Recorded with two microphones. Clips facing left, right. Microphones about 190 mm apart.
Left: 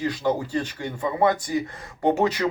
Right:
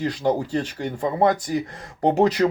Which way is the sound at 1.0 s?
35° right (ahead or behind).